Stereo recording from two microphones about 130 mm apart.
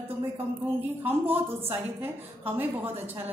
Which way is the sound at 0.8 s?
15° right (ahead or behind).